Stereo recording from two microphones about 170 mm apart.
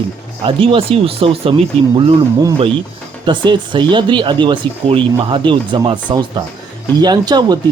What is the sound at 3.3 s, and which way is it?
Speech, 30° right (ahead or behind).